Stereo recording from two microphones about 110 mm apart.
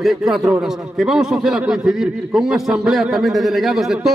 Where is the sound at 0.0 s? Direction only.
Centre (ahead or behind).